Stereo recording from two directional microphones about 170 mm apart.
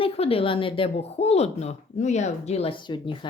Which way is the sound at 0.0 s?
35° left (ahead or behind).